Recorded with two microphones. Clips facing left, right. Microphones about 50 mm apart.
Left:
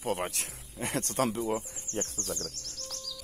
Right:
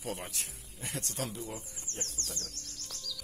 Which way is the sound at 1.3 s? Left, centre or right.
Left.